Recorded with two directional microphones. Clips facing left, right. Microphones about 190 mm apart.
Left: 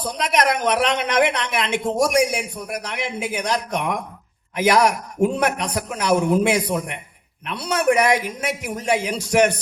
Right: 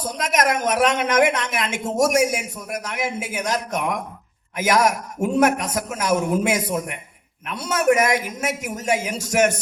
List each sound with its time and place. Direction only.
0.0 s a woman's voice: 45° right (ahead or behind)